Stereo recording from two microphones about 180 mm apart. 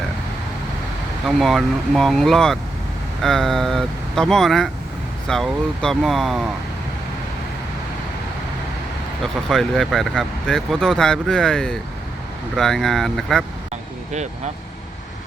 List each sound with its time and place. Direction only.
1.4 s speech: centre (ahead or behind)
9.2 s speech: centre (ahead or behind)
14.1 s speech: 40° right (ahead or behind)